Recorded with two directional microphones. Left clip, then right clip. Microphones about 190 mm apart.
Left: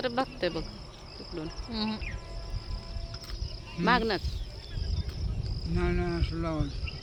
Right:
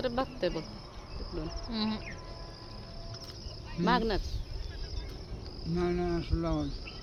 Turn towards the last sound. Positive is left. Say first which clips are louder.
# even
turn(degrees=-15)  # may be behind; listen again after turning